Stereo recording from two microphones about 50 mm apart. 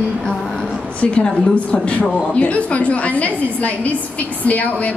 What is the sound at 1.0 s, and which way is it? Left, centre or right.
A woman's voice, left.